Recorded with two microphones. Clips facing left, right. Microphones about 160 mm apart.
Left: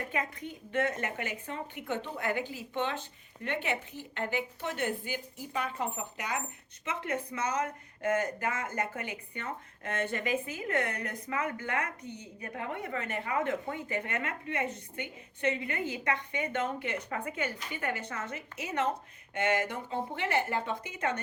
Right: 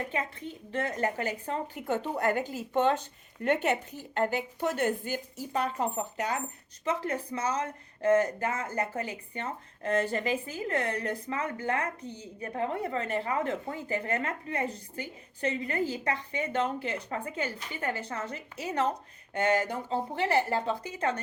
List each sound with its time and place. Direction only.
0.1 s speech: 30° right (ahead or behind)